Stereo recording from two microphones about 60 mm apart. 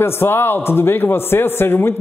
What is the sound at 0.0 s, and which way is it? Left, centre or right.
A man's voice, left.